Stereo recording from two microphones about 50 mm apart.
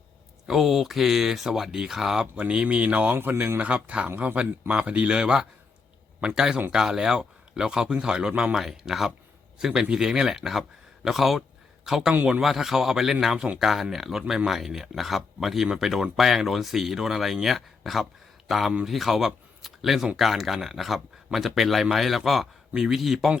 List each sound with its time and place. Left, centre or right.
0.4 s speech: centre
2.3 s speech: right
3.2 s speech: right
3.6 s speech: right
4.1 s speech: right
4.7 s speech: centre
8.3 s speech: right
8.5 s a man's voice: centre